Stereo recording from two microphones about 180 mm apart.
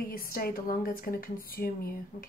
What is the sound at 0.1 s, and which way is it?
Speech, 55° left (ahead or behind).